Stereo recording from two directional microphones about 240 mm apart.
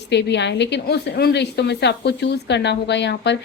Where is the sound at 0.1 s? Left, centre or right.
Left.